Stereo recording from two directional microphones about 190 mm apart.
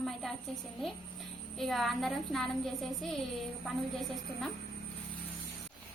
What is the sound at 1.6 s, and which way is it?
Speech, centre (ahead or behind).